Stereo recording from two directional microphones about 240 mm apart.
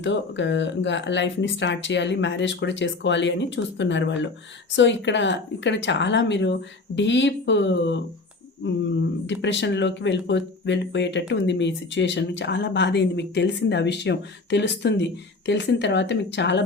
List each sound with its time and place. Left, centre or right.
0.0 s speech: left